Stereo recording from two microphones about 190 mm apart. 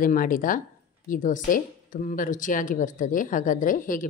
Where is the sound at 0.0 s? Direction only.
45° left (ahead or behind).